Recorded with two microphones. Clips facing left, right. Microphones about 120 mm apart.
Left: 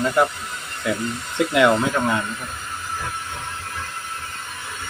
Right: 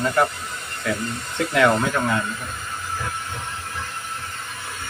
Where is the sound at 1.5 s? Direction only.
10° left (ahead or behind).